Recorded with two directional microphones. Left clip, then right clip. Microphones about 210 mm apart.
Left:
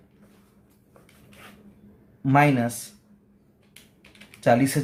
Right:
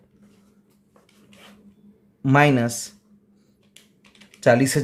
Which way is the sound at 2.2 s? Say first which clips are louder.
Right 2 dB; 45° right (ahead or behind).